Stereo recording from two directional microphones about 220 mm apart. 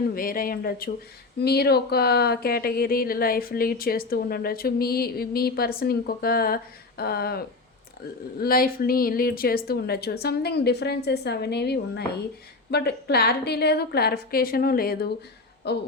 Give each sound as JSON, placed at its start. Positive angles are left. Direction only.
{"t": 0.1, "sound": "speech", "side_deg": 40}